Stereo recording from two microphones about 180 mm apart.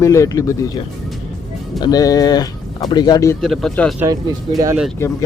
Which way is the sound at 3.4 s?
Centre (ahead or behind).